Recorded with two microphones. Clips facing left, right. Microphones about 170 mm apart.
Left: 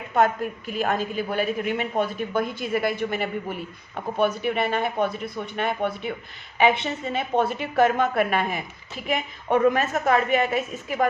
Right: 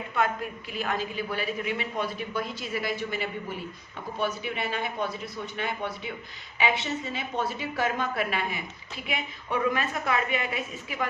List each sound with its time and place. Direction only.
0.7 s a man's voice: 50° left (ahead or behind)